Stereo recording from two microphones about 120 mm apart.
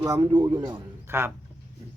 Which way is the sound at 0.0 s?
30° right (ahead or behind).